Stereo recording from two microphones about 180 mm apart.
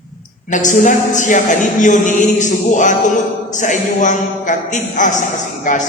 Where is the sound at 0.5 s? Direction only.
45° left (ahead or behind).